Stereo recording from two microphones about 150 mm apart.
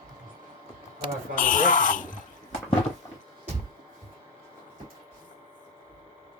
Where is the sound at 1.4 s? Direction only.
60° left (ahead or behind).